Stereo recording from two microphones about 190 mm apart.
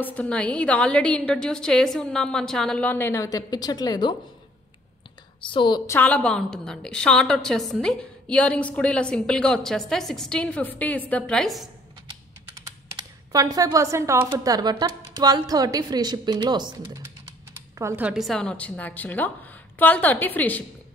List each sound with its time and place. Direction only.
0.0 s a woman's voice: 10° left (ahead or behind)
5.4 s a woman's voice: 25° left (ahead or behind)
5.9 s a woman's voice: 10° left (ahead or behind)
12.5 s computer keyboard: 20° right (ahead or behind)
14.3 s a woman's voice: 20° right (ahead or behind); by 20.6 s 10° left (ahead or behind)